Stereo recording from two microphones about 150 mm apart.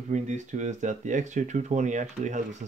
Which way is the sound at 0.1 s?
55° right (ahead or behind).